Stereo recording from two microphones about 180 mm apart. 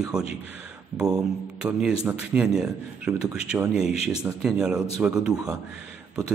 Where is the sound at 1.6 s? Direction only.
10° right (ahead or behind).